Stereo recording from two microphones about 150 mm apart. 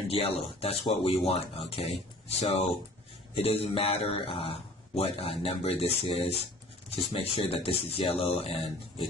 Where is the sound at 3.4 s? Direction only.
45° left (ahead or behind).